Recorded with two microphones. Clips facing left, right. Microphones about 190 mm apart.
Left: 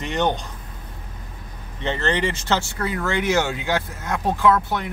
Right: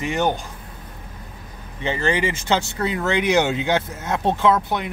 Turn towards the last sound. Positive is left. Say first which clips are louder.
# even
turn(degrees=-20)  # may be behind; listen again after turning